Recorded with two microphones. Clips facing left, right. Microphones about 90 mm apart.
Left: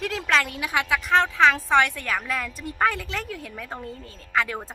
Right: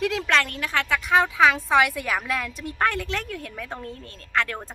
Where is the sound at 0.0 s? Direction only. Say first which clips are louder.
Right 1 dB; centre (ahead or behind).